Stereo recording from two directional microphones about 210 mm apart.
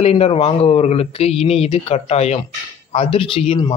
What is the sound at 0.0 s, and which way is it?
Speech, 30° left (ahead or behind).